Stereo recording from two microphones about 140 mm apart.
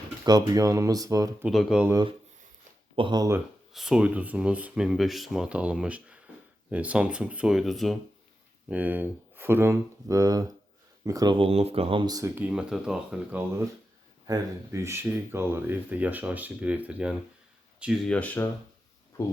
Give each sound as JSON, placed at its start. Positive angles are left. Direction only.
{"t": 0.3, "sound": "speech", "side_deg": -25}
{"t": 1.5, "sound": "speech", "side_deg": -5}
{"t": 2.9, "sound": "speech", "side_deg": -35}
{"t": 3.7, "sound": "speech", "side_deg": -5}
{"t": 8.7, "sound": "speech", "side_deg": -10}
{"t": 11.3, "sound": "speech", "side_deg": -45}
{"t": 12.3, "sound": "speech", "side_deg": -10}
{"t": 14.3, "sound": "speech", "side_deg": -20}
{"t": 18.1, "sound": "speech", "side_deg": 10}